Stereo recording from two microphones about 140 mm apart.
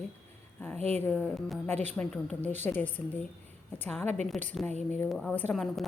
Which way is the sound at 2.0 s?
5° left (ahead or behind).